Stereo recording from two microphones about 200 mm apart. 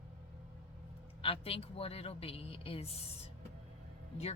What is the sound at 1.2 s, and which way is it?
Speech, 30° left (ahead or behind).